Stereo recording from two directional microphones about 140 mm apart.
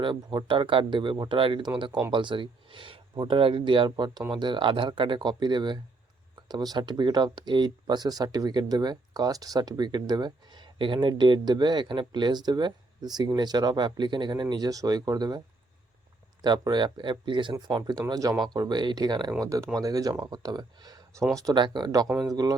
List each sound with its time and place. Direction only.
0.0 s speech: 35° right (ahead or behind)
16.4 s speech: 30° right (ahead or behind)